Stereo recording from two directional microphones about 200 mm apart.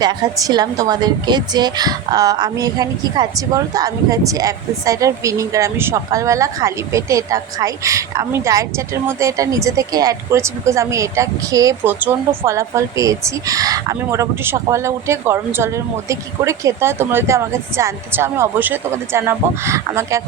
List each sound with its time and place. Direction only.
0.0 s a woman's voice: 20° right (ahead or behind)